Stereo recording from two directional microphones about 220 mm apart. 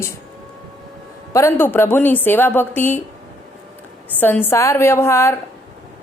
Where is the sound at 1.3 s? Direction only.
10° left (ahead or behind).